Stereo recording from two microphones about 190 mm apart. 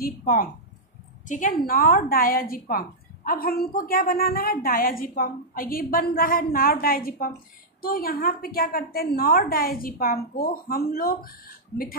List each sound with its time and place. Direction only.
0.0 s a woman's voice: 50° left (ahead or behind)